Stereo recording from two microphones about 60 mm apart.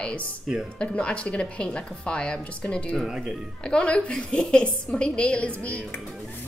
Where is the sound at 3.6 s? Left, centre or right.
Centre.